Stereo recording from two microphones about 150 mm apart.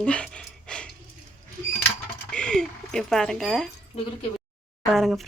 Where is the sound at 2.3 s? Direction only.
5° left (ahead or behind).